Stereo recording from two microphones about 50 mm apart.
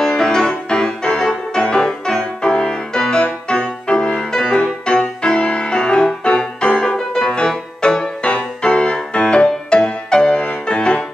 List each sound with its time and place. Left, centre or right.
0.0 s music: centre